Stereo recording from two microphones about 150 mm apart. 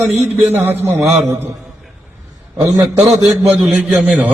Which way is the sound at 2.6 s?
20° right (ahead or behind).